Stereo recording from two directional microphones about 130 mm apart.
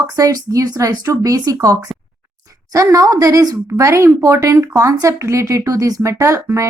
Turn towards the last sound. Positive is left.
turn(degrees=-25)  # may be behind; listen again after turning